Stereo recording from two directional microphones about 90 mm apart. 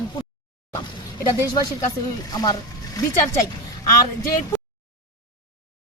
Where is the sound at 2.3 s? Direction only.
45° left (ahead or behind).